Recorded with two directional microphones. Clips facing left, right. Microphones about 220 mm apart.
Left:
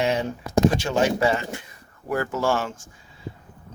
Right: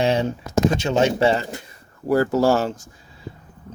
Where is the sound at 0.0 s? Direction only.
30° right (ahead or behind).